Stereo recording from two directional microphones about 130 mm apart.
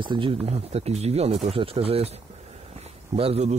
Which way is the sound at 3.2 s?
50° right (ahead or behind).